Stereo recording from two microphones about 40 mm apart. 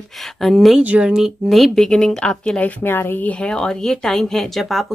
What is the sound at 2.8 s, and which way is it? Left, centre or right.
Speech, left.